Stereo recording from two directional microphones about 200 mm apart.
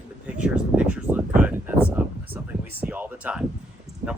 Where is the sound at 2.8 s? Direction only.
10° right (ahead or behind).